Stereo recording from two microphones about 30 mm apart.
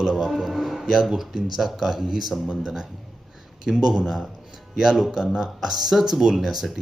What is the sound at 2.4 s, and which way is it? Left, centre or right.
Speech, right.